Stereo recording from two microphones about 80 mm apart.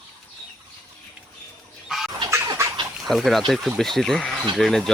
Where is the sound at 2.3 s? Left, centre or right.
Right.